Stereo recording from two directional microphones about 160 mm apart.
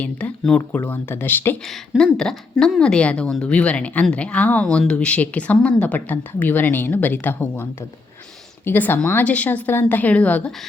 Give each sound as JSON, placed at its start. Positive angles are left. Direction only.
{"t": 0.0, "sound": "speech", "side_deg": 10}
{"t": 1.9, "sound": "speech", "side_deg": 0}